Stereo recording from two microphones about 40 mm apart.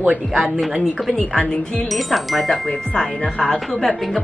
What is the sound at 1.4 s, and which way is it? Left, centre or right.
Speech, left.